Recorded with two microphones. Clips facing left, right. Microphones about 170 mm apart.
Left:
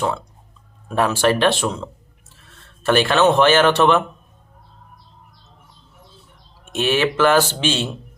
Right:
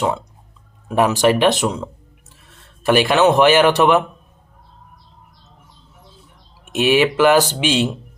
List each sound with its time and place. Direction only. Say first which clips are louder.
0.9 s speech: right 3 dB; 15° right (ahead or behind)
6.7 s speech: right 4 dB; 15° right (ahead or behind)